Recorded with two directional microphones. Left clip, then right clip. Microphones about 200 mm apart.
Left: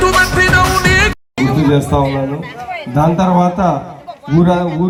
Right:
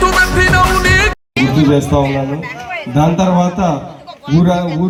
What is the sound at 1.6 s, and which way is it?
Chatter, 40° right (ahead or behind).